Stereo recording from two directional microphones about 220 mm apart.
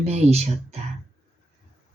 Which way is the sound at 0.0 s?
30° right (ahead or behind).